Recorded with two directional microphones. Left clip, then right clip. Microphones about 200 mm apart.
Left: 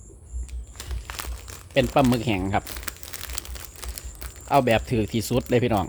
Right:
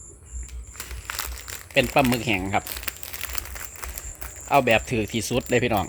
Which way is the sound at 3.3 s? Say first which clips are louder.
Right 3 dB; 30° left (ahead or behind).